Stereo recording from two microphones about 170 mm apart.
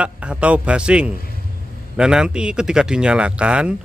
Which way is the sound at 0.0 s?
5° right (ahead or behind).